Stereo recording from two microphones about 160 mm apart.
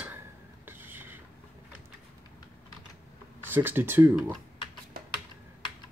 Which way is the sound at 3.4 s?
15° right (ahead or behind).